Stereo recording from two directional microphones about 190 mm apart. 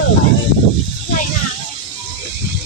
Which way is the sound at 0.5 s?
55° left (ahead or behind).